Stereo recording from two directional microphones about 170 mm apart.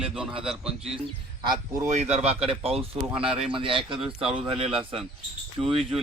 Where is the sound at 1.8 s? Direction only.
40° right (ahead or behind).